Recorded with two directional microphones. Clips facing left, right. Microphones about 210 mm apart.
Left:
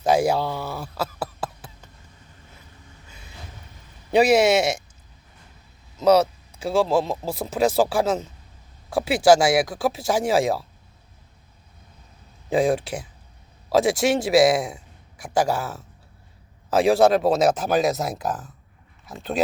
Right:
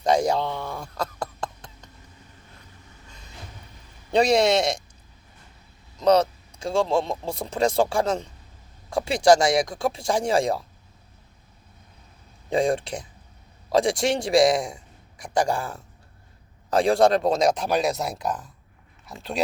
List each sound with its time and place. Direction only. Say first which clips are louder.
0.0 s speech: left 2 dB; 5° left (ahead or behind)
4.1 s a man's voice: left 2 dB; 5° left (ahead or behind)
6.0 s speech: left 2 dB; 5° left (ahead or behind)
12.5 s speech: left 2 dB; 5° left (ahead or behind)